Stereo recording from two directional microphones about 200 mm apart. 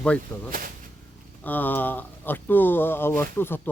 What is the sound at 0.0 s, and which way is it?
Speech, 5° left (ahead or behind).